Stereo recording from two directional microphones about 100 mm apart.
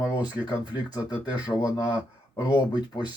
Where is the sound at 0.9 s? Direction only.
50° left (ahead or behind).